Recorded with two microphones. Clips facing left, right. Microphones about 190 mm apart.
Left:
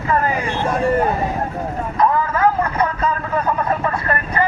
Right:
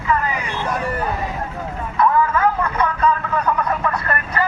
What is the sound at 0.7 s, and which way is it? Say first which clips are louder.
Vehicle: left 6 dB; 30° left (ahead or behind).